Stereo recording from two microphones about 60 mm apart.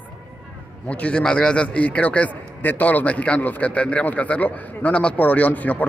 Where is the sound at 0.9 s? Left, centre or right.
Left.